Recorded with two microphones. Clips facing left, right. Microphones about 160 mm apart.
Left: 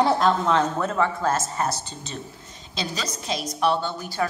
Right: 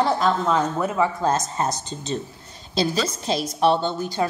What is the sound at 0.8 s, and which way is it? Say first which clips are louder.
Speech: right 2 dB; 10° right (ahead or behind).